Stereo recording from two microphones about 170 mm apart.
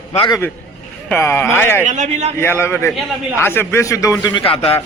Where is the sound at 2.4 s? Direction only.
15° left (ahead or behind); by 4.8 s 35° left (ahead or behind).